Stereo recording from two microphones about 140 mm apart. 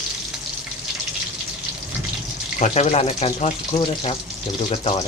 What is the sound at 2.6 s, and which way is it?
Speech, 50° left (ahead or behind).